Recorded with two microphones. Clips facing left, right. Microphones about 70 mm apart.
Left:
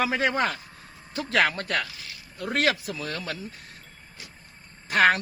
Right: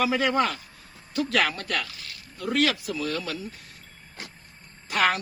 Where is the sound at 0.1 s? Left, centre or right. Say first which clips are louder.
Right 1 dB; left.